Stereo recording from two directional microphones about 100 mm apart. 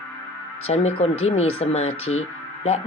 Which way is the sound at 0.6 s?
90° left.